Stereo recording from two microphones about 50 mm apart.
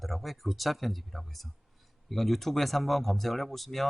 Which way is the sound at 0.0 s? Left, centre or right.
Centre.